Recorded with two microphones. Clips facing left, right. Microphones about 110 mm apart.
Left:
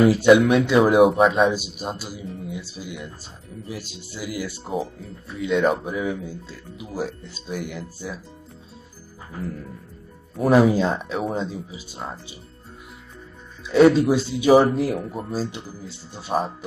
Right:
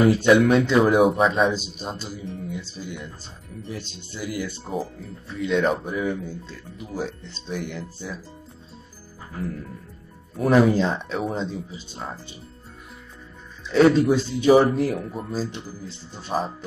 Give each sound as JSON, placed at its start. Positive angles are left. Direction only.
{"t": 0.0, "sound": "speech", "side_deg": 5}
{"t": 10.3, "sound": "speech", "side_deg": 5}
{"t": 13.7, "sound": "speech", "side_deg": 5}